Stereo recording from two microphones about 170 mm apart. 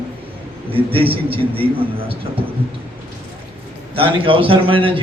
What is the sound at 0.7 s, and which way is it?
Speech, 35° right (ahead or behind).